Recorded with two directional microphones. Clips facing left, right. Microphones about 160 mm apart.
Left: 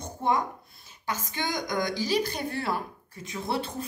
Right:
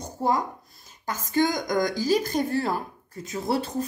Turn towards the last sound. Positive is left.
turn(degrees=-40)  # may be behind; listen again after turning